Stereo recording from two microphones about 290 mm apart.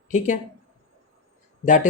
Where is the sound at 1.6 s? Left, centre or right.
Left.